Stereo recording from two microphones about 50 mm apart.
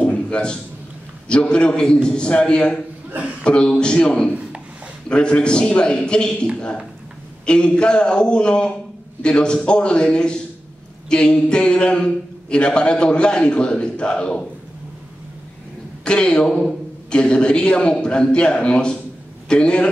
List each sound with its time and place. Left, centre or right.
0.0 s a sound: left
1.3 s a man's voice: centre
4.3 s a sound: right
5.0 s a man's voice: centre
7.4 s a man's voice: centre
16.0 s a man's voice: centre